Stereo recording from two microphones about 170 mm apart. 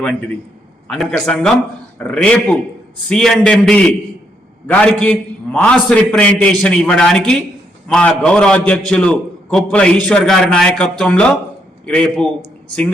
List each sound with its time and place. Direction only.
0.9 s a man's voice: 5° left (ahead or behind)